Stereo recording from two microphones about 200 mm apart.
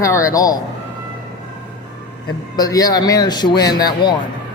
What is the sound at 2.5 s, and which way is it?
Speech, 20° left (ahead or behind).